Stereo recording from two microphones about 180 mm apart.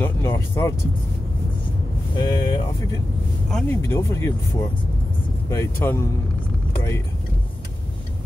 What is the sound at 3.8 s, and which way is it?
Speech, 15° left (ahead or behind).